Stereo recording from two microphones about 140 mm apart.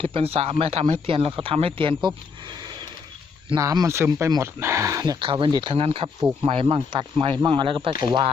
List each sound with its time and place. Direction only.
0.0 s speech: 40° right (ahead or behind); by 5.3 s 25° right (ahead or behind)
5.3 s speech: 35° right (ahead or behind)